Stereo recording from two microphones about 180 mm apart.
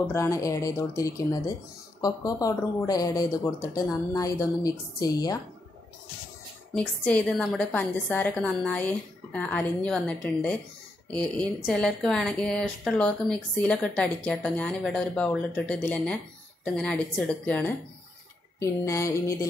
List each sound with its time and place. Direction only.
0.1 s speech: 15° left (ahead or behind)
6.7 s a woman's voice: 5° left (ahead or behind)